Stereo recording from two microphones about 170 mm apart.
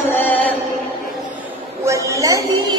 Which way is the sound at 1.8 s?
20° right (ahead or behind).